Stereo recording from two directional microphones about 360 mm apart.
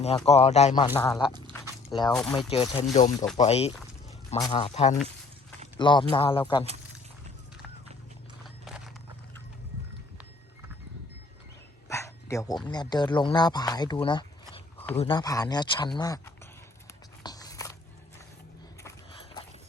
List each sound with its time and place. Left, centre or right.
0.0 s speech: centre
1.3 s a sound: centre
2.1 s speech: centre
2.5 s speech: centre
8.4 s horse: centre
11.9 s speech: centre
17.2 s biting: centre
18.8 s biting: centre